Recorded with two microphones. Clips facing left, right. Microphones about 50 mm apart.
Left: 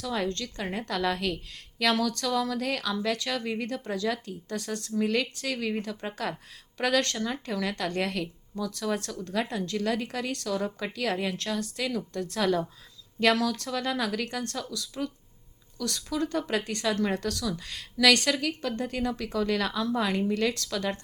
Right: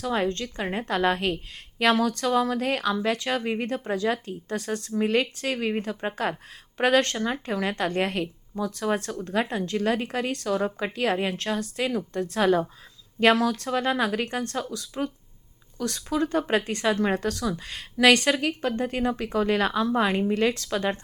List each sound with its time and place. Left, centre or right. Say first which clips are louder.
0.0 s a woman's voice: right 4 dB; right